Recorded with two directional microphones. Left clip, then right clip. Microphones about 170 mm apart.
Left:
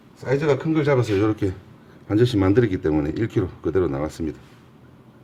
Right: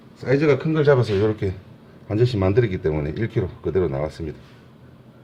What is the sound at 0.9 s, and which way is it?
Speech, 35° left (ahead or behind).